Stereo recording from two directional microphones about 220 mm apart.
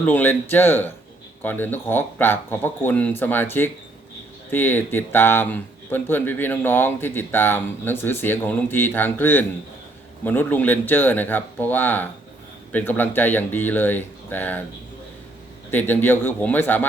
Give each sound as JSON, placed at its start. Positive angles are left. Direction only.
{"t": 0.0, "sound": "speech", "side_deg": 10}
{"t": 15.7, "sound": "speech", "side_deg": 10}